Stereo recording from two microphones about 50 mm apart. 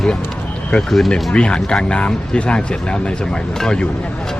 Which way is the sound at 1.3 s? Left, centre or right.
Centre.